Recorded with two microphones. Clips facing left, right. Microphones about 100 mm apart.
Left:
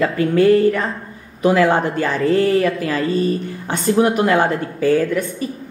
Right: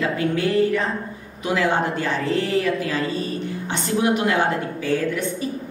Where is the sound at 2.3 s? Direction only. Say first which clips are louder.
Left 6 dB; 35° left (ahead or behind).